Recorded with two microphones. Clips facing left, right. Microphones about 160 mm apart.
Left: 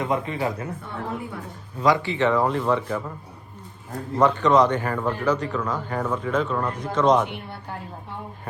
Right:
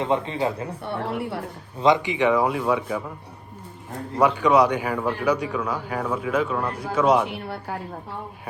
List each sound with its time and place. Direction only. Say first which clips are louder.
0.0 s a man's voice: right 2 dB; 25° right (ahead or behind)
0.9 s speech: right 7 dB; 75° right (ahead or behind)
1.8 s a man's voice: right 1 dB; 20° right (ahead or behind)
4.2 s a man's voice: even; 10° right (ahead or behind)